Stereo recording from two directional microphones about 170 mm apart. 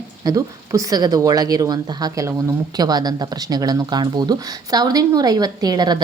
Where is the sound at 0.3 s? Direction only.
20° right (ahead or behind).